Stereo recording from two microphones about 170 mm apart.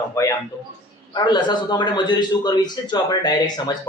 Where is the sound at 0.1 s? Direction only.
20° left (ahead or behind).